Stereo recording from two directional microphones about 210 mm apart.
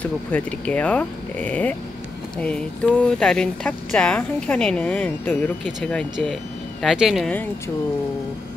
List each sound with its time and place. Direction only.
0.0 s speech: 5° left (ahead or behind)